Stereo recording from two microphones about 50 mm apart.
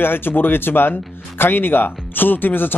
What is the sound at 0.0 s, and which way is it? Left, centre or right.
Speech, left.